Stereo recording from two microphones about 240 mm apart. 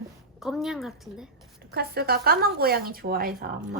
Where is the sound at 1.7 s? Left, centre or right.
Right.